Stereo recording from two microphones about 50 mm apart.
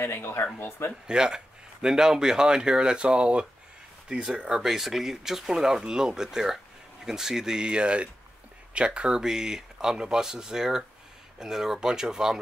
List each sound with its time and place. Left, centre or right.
0.0 s speech: left
1.0 s speech: centre
4.5 s speech: centre